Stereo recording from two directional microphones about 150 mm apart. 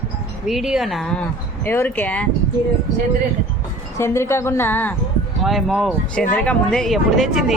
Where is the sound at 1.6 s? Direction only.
15° left (ahead or behind).